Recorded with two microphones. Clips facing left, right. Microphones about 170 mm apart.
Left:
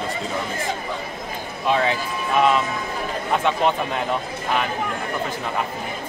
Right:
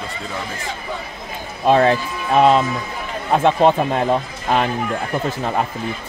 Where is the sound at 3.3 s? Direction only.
50° right (ahead or behind).